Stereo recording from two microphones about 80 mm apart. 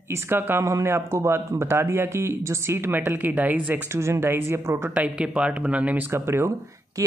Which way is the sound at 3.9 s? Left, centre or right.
Right.